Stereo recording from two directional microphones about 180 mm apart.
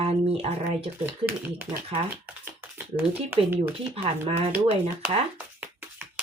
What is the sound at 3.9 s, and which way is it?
Speech, 30° right (ahead or behind).